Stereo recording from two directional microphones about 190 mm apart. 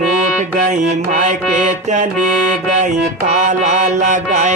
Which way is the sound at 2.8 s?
40° right (ahead or behind).